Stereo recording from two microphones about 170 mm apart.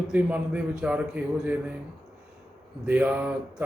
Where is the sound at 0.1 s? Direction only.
10° right (ahead or behind).